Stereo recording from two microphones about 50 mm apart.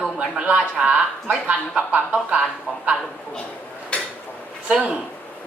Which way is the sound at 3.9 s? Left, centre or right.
Left.